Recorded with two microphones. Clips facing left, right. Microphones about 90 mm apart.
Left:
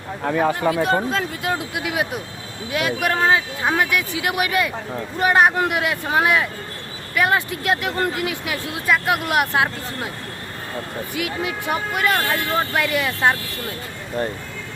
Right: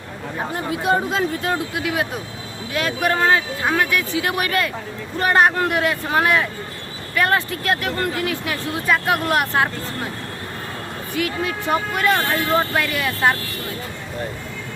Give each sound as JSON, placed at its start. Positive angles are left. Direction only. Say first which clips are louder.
{"t": 0.3, "sound": "speech", "louder": "left 7 dB", "side_deg": 90}
{"t": 1.3, "sound": "speech", "louder": "right 2 dB", "side_deg": 10}
{"t": 11.2, "sound": "speech", "louder": "right 3 dB", "side_deg": 10}
{"t": 12.9, "sound": "speech", "louder": "even", "side_deg": 15}